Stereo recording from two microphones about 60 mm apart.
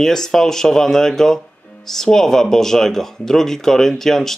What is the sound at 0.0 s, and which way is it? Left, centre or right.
Speech, centre.